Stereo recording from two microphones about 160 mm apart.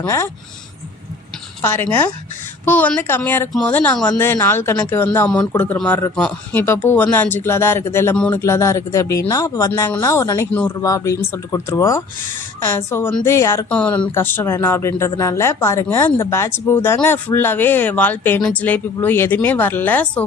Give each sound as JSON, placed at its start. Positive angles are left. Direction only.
{"t": 0.0, "sound": "speech", "side_deg": 20}
{"t": 1.6, "sound": "speech", "side_deg": 15}
{"t": 8.4, "sound": "speech", "side_deg": 15}